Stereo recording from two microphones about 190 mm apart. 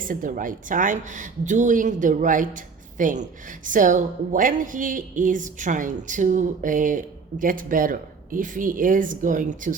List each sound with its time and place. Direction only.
0.0 s a woman's voice: 45° right (ahead or behind)